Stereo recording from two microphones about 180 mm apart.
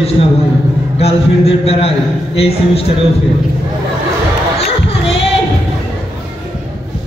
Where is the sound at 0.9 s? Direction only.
35° left (ahead or behind).